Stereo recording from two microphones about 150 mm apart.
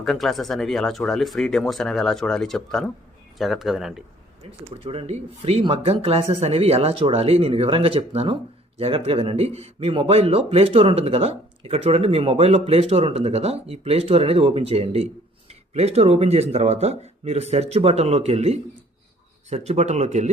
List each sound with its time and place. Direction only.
0.0 s speech: centre (ahead or behind)
4.7 s speech: 40° right (ahead or behind)